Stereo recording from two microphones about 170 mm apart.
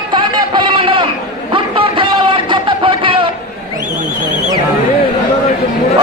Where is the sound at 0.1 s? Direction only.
25° right (ahead or behind).